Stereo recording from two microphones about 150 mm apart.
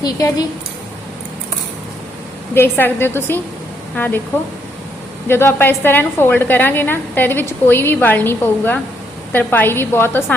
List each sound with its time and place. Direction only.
0.0 s speech: 25° left (ahead or behind)
2.6 s a woman's voice: 15° left (ahead or behind)
5.3 s a woman's voice: 15° left (ahead or behind)